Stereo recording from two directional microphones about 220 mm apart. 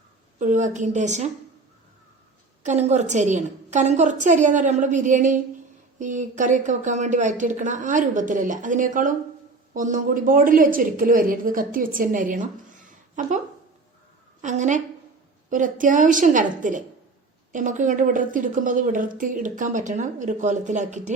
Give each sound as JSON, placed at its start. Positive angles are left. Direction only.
{"t": 0.3, "sound": "speech", "side_deg": -35}
{"t": 2.6, "sound": "speech", "side_deg": -30}
{"t": 14.4, "sound": "speech", "side_deg": -35}